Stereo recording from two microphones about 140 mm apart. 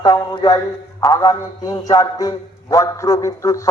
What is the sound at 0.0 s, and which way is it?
A man's voice, 30° left (ahead or behind).